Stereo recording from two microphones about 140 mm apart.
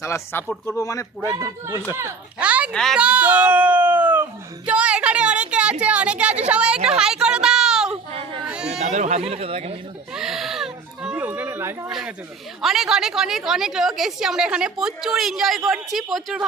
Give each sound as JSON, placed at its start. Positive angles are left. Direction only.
{"t": 0.0, "sound": "speech", "side_deg": 20}
{"t": 0.4, "sound": "a woman's voice", "side_deg": 5}
{"t": 0.8, "sound": "speech", "side_deg": 25}
{"t": 1.2, "sound": "speech", "side_deg": -20}
{"t": 2.4, "sound": "a sound", "side_deg": -10}
{"t": 2.7, "sound": "a woman's voice", "side_deg": 5}
{"t": 3.0, "sound": "a sound", "side_deg": -10}
{"t": 5.8, "sound": "a woman's voice", "side_deg": -10}
{"t": 6.5, "sound": "a sound", "side_deg": -5}
{"t": 8.4, "sound": "chatter", "side_deg": -5}
{"t": 8.8, "sound": "speech", "side_deg": -55}
{"t": 10.2, "sound": "baby cry", "side_deg": -5}
{"t": 11.9, "sound": "a woman's voice", "side_deg": 0}